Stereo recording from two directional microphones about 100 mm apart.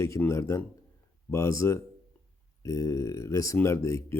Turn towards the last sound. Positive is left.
turn(degrees=30)  # may be behind; listen again after turning